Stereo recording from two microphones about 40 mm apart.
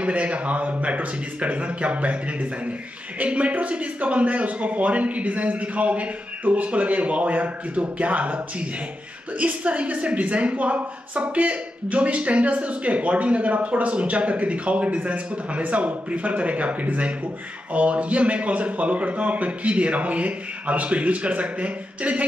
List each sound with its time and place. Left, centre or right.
0.0 s a woman's voice: right